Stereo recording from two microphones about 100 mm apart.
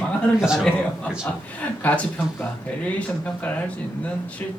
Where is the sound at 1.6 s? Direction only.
15° left (ahead or behind).